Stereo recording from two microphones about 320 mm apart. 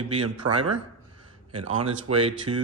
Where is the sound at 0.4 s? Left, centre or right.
Right.